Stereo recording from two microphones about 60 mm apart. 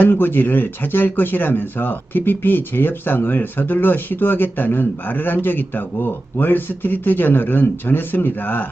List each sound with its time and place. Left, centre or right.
0.0 s speech: left